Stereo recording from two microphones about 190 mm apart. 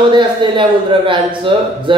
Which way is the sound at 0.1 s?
25° right (ahead or behind).